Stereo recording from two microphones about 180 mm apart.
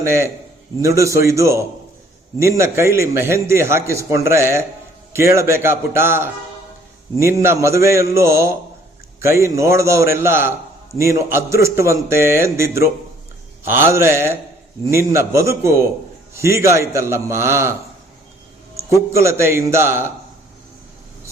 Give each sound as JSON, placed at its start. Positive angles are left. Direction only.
{"t": 0.0, "sound": "a man's voice", "side_deg": -15}
{"t": 18.8, "sound": "a man's voice", "side_deg": -15}